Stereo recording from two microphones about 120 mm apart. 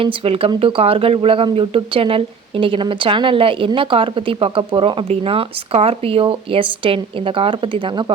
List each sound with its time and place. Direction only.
0.0 s speech: 50° right (ahead or behind)